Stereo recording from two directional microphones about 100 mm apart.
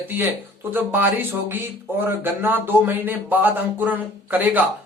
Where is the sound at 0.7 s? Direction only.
20° right (ahead or behind).